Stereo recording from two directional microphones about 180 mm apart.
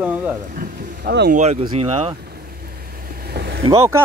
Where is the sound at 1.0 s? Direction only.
65° right (ahead or behind).